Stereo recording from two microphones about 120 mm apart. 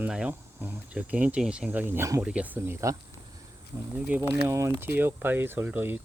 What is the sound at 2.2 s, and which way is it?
Speech, 10° right (ahead or behind).